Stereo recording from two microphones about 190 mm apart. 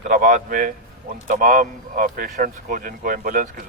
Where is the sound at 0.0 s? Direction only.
45° right (ahead or behind).